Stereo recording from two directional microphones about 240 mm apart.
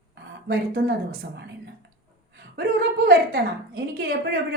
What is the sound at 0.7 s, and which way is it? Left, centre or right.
A woman's voice, right.